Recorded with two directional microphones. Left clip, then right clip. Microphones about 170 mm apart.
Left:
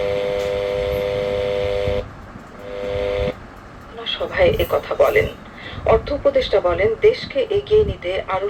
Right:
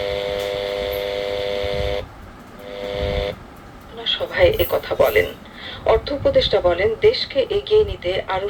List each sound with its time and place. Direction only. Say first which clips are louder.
0.0 s vehicle: left 2 dB; 15° right (ahead or behind)
3.9 s speech: even; 15° right (ahead or behind)